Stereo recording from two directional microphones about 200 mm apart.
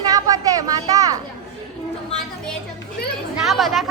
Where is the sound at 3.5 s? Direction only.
Centre (ahead or behind).